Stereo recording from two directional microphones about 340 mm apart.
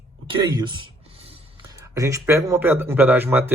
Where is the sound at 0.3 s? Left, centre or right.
Centre.